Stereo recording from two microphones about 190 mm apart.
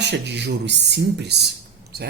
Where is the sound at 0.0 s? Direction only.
65° right (ahead or behind).